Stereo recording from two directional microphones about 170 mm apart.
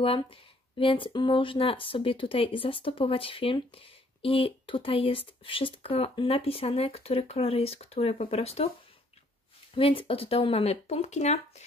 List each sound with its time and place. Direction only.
0.0 s speech: 30° left (ahead or behind)
9.8 s speech: 35° left (ahead or behind)